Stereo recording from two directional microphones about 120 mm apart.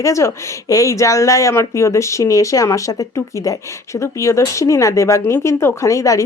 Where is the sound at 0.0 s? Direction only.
25° left (ahead or behind).